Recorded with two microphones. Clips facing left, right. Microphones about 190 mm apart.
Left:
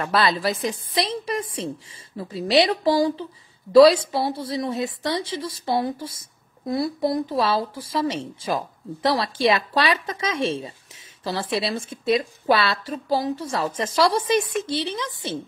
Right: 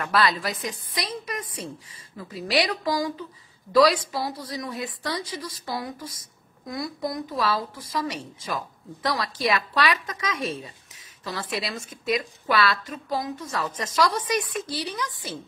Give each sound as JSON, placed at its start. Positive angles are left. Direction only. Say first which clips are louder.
{"t": 0.0, "sound": "a woman's voice", "louder": "left 3 dB", "side_deg": 25}